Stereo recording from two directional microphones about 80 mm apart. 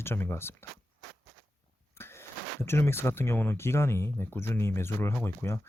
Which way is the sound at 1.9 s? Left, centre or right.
Left.